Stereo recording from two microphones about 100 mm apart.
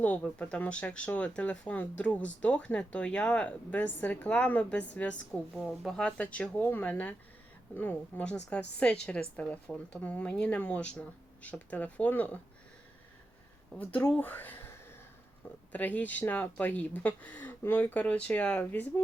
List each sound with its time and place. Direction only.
0.0 s speech: 15° left (ahead or behind)
13.7 s speech: 15° left (ahead or behind)
14.2 s a sound: 20° left (ahead or behind)
15.7 s speech: 15° left (ahead or behind)